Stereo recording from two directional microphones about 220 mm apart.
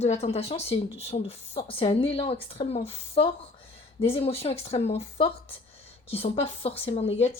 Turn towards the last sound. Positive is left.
turn(degrees=30)  # may be behind; listen again after turning